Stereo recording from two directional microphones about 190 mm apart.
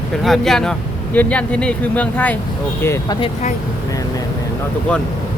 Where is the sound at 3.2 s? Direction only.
40° left (ahead or behind).